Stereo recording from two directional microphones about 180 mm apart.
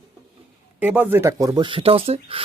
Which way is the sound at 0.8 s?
10° right (ahead or behind).